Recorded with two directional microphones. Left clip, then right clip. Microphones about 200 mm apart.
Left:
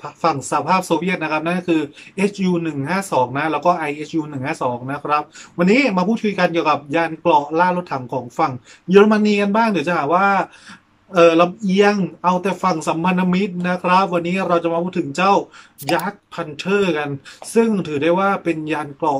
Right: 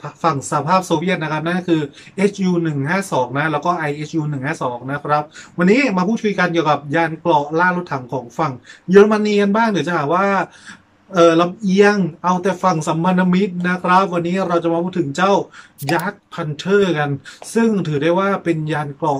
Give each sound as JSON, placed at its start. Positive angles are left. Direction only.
{"t": 0.0, "sound": "speech", "side_deg": 5}